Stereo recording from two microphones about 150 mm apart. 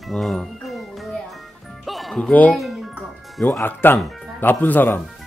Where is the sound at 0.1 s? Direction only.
Centre (ahead or behind).